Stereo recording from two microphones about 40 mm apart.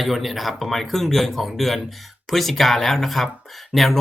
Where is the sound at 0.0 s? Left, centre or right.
Centre.